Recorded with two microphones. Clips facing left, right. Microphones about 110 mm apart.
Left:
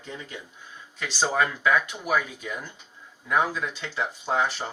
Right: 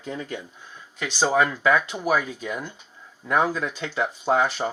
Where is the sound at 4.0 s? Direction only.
60° right (ahead or behind).